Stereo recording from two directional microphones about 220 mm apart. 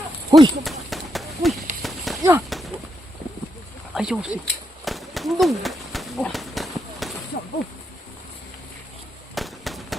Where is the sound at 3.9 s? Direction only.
Centre (ahead or behind).